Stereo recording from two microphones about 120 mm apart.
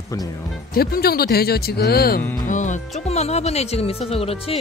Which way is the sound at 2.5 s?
85° left.